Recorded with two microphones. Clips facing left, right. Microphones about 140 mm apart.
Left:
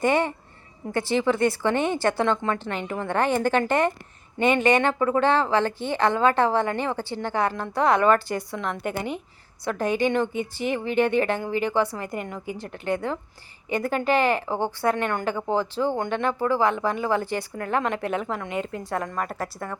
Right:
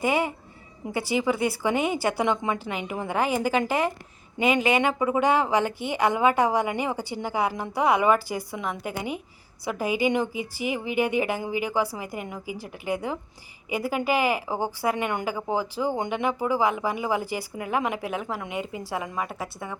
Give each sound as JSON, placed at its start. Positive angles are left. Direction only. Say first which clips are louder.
{"t": 0.0, "sound": "a woman's voice", "louder": "left 2 dB", "side_deg": -5}